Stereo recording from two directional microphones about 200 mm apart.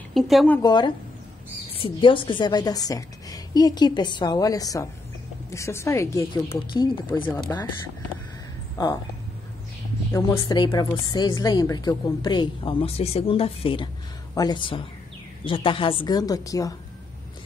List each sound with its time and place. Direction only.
0.1 s speech: centre (ahead or behind)
0.6 s a woman's voice: 20° left (ahead or behind)
8.7 s speech: 20° left (ahead or behind)
10.1 s a woman's voice: 15° left (ahead or behind)